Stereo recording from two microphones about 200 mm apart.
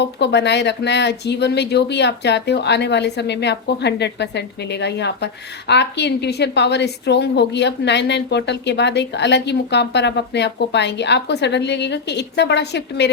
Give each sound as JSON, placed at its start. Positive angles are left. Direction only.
{"t": 0.0, "sound": "speech", "side_deg": 60}